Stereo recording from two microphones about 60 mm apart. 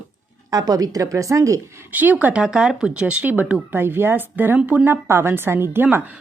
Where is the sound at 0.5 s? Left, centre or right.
Right.